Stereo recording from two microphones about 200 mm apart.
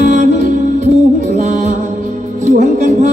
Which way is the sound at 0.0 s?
35° right (ahead or behind).